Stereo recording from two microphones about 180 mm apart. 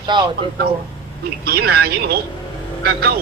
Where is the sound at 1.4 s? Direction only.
60° right (ahead or behind).